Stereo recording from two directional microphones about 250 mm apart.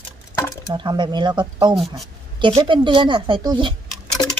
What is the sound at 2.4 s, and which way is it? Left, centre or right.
Speech, centre.